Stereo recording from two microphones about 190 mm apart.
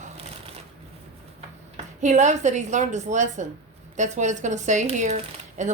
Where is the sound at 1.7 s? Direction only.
40° right (ahead or behind).